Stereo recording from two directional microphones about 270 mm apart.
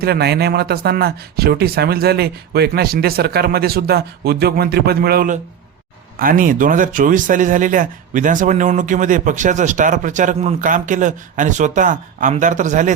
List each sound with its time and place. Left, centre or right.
0.0 s speech: right